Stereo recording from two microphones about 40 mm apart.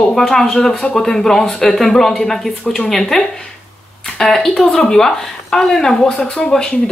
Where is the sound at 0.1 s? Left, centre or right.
Centre.